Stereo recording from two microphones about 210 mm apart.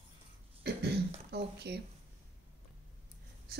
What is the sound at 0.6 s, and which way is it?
Throat clearing, 50° right (ahead or behind).